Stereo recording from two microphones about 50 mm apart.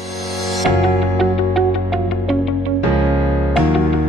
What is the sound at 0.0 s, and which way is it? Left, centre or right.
Music, centre.